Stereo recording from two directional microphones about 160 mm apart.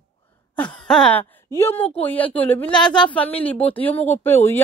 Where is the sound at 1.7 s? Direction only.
40° left (ahead or behind).